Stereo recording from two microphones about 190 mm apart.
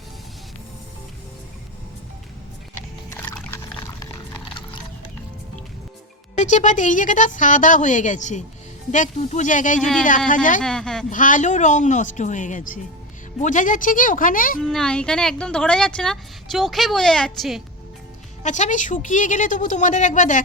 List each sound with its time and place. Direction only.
3.1 s music: 15° left (ahead or behind)
6.3 s speech: 40° left (ahead or behind)
10.6 s speech: 5° left (ahead or behind)
11.1 s speech: 45° left (ahead or behind)
14.6 s speech: centre (ahead or behind)
18.4 s speech: 40° left (ahead or behind)